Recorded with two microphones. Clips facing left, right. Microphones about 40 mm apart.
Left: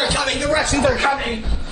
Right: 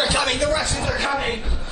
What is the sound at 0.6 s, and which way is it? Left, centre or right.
Speech, left.